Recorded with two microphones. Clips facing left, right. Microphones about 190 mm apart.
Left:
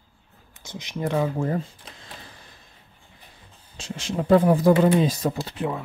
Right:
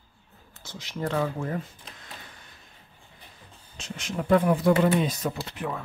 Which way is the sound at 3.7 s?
30° left (ahead or behind).